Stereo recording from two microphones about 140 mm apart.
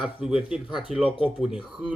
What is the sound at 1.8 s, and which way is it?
Speech, 70° right (ahead or behind).